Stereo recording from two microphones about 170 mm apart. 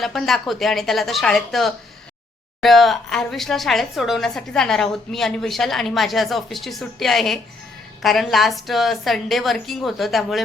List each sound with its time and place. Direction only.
0.0 s a woman's voice: centre (ahead or behind)